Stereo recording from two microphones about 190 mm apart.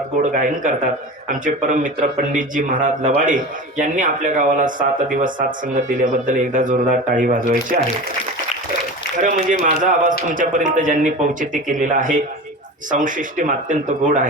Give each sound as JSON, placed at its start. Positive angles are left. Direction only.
{"t": 0.2, "sound": "speech", "side_deg": -45}
{"t": 9.1, "sound": "speech", "side_deg": -40}